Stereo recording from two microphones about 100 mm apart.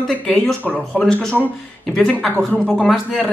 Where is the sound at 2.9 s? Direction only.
Centre (ahead or behind).